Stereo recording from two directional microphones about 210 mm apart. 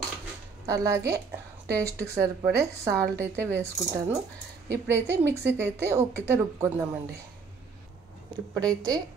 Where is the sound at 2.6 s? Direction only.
15° right (ahead or behind).